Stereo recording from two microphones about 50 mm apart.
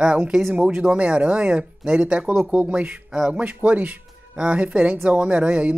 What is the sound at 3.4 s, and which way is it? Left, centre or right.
Speech, right.